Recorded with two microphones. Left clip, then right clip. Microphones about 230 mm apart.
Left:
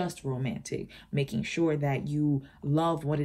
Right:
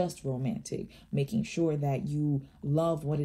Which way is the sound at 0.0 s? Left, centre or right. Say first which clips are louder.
Right 1 dB; left.